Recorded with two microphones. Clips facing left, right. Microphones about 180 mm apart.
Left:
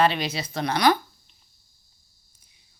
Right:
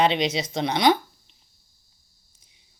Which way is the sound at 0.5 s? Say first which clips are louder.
Even; 20° right (ahead or behind).